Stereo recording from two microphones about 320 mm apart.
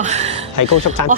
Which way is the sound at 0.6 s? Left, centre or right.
Left.